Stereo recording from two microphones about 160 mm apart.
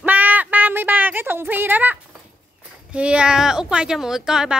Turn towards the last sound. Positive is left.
turn(degrees=-5)  # may be behind; listen again after turning